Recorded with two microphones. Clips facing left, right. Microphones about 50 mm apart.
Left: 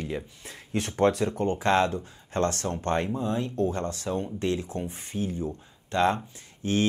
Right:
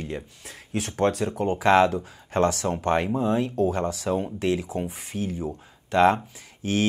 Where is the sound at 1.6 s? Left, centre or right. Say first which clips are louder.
Right 6 dB; centre.